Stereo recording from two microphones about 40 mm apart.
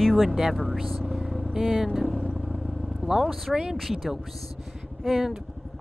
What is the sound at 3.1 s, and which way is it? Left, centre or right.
Speech, centre.